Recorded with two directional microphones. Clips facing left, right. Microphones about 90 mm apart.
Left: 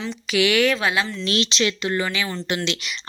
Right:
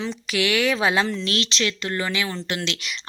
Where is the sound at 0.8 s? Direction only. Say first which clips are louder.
Right 2 dB; 30° right (ahead or behind).